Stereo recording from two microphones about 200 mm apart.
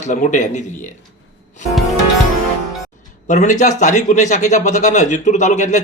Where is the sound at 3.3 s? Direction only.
35° left (ahead or behind).